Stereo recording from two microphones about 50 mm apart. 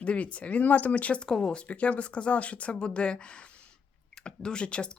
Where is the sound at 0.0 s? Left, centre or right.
Left.